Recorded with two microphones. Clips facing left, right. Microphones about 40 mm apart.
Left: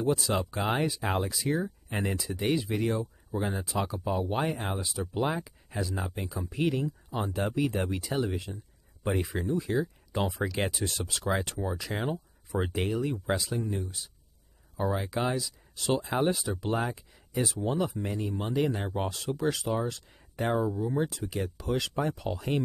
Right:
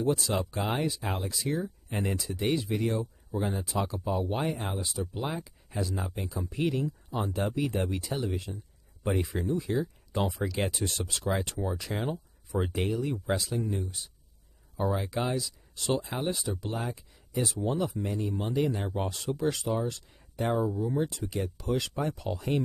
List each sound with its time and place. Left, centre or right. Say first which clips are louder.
0.0 s speech: even; centre
1.0 s speech: left 4 dB; left
1.3 s speech: left 2 dB; centre
3.6 s speech: even; centre
5.0 s speech: left 4 dB; centre
10.7 s speech: even; centre
11.9 s speech: left 1 dB; centre
15.1 s speech: left 1 dB; centre
16.6 s speech: left 8 dB; centre
17.1 s a sound: left 1 dB; centre
17.5 s speech: even; centre
19.0 s speech: even; centre
19.9 s speech: even; centre
21.1 s speech: even; centre